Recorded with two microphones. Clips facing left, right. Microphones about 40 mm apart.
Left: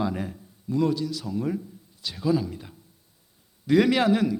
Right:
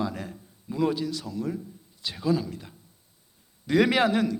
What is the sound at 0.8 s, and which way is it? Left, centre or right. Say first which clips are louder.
Speech: right 1 dB; centre.